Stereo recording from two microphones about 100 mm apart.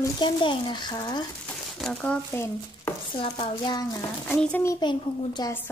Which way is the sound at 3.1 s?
65° left (ahead or behind).